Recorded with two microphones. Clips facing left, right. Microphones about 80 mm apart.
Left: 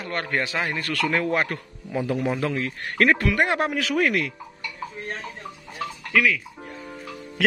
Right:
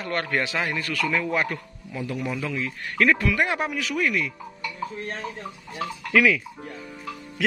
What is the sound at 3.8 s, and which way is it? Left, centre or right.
Speech, left.